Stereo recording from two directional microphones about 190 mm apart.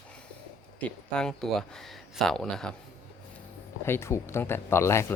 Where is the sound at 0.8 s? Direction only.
5° left (ahead or behind).